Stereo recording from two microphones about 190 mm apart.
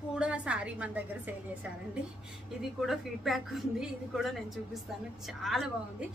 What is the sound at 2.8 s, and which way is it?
A woman's voice, centre (ahead or behind).